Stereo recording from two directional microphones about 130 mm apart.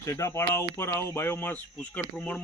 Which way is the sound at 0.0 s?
25° left (ahead or behind).